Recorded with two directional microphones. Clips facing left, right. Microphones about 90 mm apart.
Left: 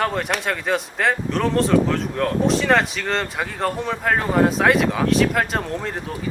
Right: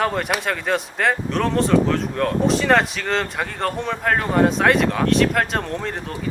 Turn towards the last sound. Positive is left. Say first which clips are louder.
# even
turn(degrees=0)  # may be behind; listen again after turning